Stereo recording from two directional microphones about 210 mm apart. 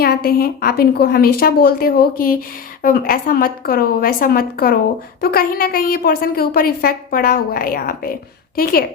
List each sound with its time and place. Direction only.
0.0 s a woman's voice: 45° left (ahead or behind)